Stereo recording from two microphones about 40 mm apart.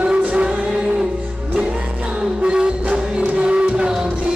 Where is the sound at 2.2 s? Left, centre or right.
Right.